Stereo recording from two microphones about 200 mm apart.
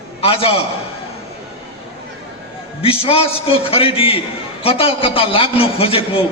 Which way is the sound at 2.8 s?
30° left (ahead or behind).